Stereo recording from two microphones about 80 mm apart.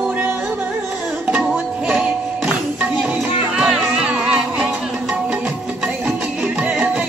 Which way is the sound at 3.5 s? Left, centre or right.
Centre.